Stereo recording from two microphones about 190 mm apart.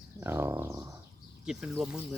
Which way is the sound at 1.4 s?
5° right (ahead or behind).